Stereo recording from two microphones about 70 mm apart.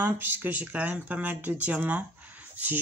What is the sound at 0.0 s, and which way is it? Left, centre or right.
Speech, right.